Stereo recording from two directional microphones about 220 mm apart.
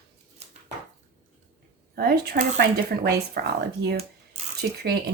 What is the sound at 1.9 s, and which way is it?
Speech, 45° right (ahead or behind).